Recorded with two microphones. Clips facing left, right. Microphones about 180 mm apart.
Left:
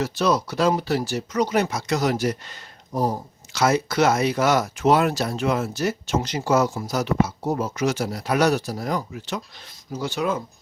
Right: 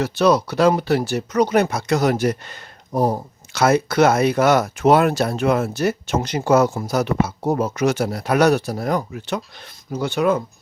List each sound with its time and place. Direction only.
0.0 s speech: 65° right (ahead or behind)